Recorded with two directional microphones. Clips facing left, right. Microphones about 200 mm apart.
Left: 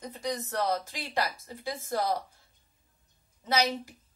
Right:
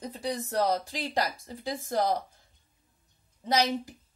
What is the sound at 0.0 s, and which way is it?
Speech, 30° right (ahead or behind).